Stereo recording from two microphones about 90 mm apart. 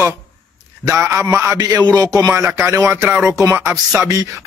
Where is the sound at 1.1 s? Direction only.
30° right (ahead or behind).